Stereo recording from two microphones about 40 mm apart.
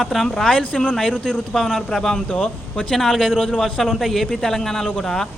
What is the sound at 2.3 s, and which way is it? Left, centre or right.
Speech, left.